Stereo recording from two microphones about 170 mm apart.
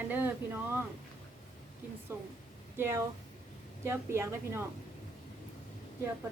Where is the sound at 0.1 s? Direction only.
10° right (ahead or behind).